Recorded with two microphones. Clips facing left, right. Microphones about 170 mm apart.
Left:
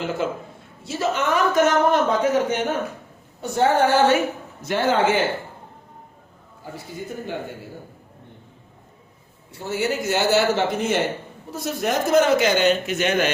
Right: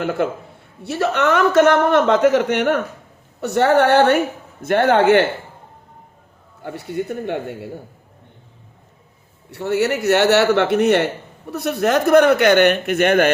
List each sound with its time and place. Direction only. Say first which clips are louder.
0.0 s a man's voice: right 4 dB; 60° right (ahead or behind)
6.6 s speech: right 9 dB; 70° right (ahead or behind)
9.5 s a man's voice: right 6 dB; 65° right (ahead or behind)